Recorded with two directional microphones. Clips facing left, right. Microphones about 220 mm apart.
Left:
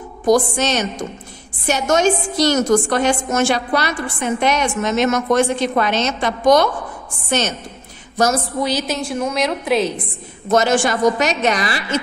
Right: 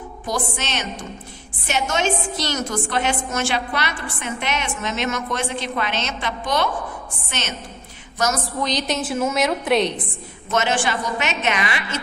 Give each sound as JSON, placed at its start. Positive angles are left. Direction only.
{"t": 0.3, "sound": "a woman's voice", "side_deg": 40}
{"t": 8.5, "sound": "a woman's voice", "side_deg": 5}
{"t": 10.5, "sound": "a woman's voice", "side_deg": 40}